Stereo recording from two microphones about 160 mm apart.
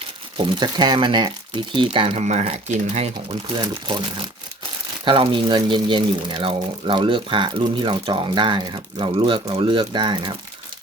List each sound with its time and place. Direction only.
0.3 s speech: 30° right (ahead or behind)
3.5 s speech: 30° right (ahead or behind)